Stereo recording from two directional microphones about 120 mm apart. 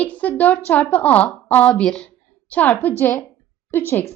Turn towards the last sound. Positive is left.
turn(degrees=15)  # may be behind; listen again after turning